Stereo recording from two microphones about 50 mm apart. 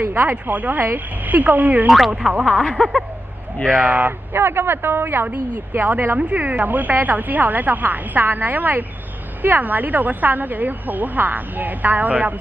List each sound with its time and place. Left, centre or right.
0.0 s speech: right
0.5 s speech: right
1.9 s speech: centre
2.4 s speech: left
3.9 s speech: right